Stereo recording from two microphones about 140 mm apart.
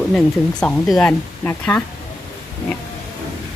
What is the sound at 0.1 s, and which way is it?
Speech, 5° left (ahead or behind).